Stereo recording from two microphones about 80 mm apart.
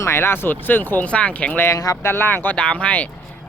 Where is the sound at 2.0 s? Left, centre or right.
Left.